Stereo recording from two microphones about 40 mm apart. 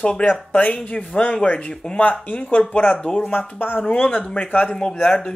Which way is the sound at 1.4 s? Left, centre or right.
Left.